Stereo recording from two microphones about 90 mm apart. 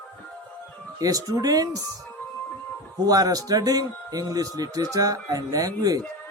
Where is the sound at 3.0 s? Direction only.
45° right (ahead or behind).